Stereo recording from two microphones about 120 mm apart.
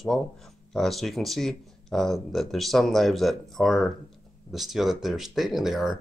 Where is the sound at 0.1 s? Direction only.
5° left (ahead or behind).